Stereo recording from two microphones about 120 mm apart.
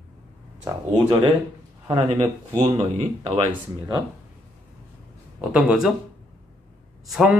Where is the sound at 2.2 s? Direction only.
30° right (ahead or behind).